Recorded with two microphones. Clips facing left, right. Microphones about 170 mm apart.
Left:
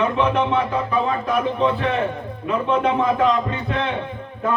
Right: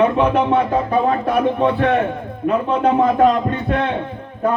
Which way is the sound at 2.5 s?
40° right (ahead or behind).